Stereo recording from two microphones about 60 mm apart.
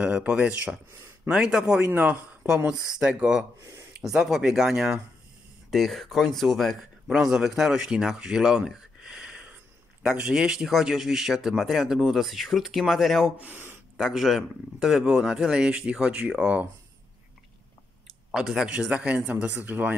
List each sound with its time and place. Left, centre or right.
0.0 s speech: centre
1.3 s a man's voice: centre
1.9 s speech: right
2.7 s a man's voice: centre
5.7 s speech: centre
13.4 s speech: right
13.9 s a man's voice: centre
18.3 s speech: centre
18.9 s a man's voice: centre